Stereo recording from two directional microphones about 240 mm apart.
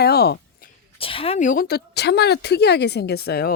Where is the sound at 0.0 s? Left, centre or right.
Left.